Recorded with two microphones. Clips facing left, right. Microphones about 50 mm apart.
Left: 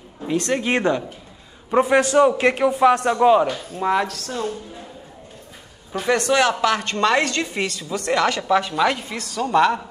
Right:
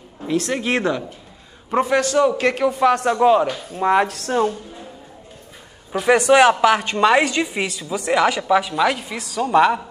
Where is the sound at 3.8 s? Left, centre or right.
Centre.